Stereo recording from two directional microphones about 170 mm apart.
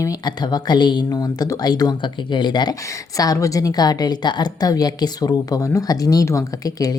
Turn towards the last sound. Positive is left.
turn(degrees=20)  # may be behind; listen again after turning